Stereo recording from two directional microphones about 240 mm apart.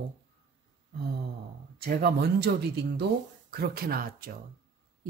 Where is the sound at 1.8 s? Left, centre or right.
Right.